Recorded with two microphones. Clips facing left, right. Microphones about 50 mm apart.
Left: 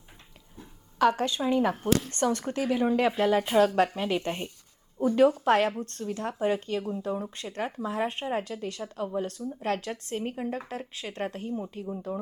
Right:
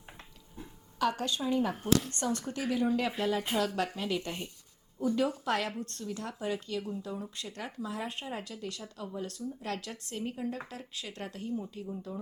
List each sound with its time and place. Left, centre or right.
0.9 s speech: left